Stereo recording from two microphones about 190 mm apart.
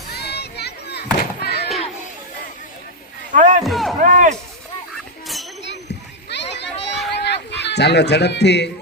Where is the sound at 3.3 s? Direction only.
40° right (ahead or behind).